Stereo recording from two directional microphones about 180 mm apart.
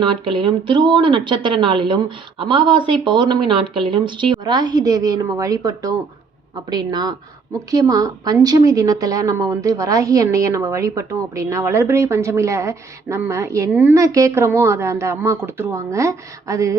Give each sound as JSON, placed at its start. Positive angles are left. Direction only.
{"t": 0.0, "sound": "a woman's voice", "side_deg": -25}